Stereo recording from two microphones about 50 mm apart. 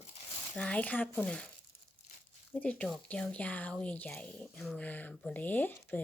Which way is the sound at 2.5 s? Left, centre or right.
Left.